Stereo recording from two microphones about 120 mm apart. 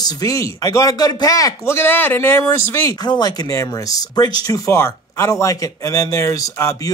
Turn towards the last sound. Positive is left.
turn(degrees=25)  # may be behind; listen again after turning